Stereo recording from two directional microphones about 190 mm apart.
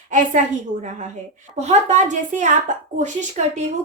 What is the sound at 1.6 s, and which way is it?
A woman's voice, 35° right (ahead or behind).